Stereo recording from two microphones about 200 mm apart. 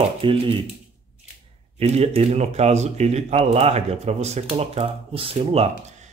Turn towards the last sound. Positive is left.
turn(degrees=-30)  # may be behind; listen again after turning